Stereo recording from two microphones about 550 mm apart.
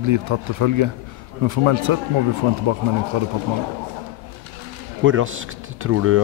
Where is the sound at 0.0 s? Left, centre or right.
Right.